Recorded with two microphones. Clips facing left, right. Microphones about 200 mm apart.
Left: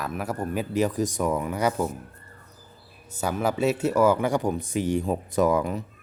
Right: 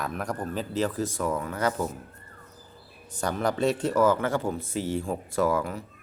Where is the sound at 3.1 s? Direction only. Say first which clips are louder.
Left 1 dB; 5° left (ahead or behind).